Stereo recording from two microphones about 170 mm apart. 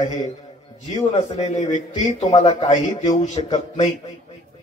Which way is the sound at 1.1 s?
40° left (ahead or behind).